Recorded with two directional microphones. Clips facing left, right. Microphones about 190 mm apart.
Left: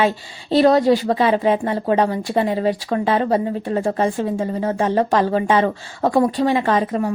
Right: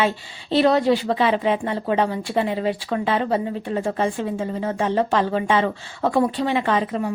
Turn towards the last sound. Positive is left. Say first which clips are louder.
# left 3 dB
turn(degrees=40)  # may be behind; listen again after turning